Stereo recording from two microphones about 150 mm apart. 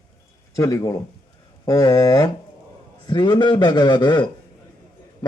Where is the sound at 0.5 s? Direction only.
20° left (ahead or behind).